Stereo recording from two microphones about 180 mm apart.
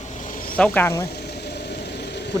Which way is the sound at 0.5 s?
10° left (ahead or behind).